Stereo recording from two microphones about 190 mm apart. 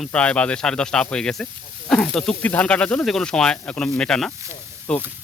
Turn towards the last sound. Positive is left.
turn(degrees=5)  # may be behind; listen again after turning